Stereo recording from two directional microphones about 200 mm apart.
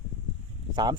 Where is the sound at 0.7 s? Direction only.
20° right (ahead or behind).